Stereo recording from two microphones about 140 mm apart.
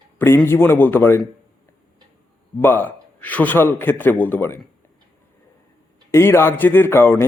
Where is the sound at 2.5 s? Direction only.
15° left (ahead or behind).